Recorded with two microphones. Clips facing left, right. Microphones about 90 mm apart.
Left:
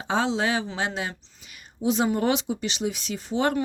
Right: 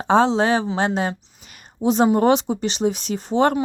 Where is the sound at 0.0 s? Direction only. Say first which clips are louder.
Right 8 dB; 35° right (ahead or behind).